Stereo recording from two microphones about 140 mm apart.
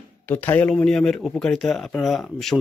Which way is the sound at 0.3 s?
10° left (ahead or behind).